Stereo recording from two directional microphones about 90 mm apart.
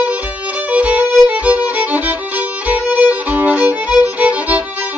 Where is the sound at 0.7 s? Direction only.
15° right (ahead or behind).